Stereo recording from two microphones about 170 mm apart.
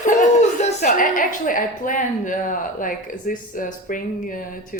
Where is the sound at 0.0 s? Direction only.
45° left (ahead or behind).